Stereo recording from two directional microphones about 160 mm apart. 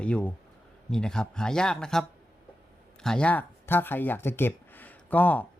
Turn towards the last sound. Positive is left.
turn(degrees=10)  # may be behind; listen again after turning